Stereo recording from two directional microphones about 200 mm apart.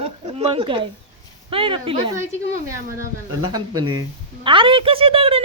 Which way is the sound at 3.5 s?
20° right (ahead or behind).